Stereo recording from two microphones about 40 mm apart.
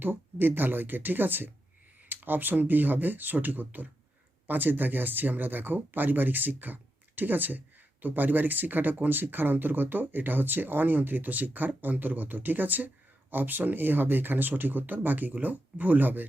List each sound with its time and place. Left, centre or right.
0.0 s speech: right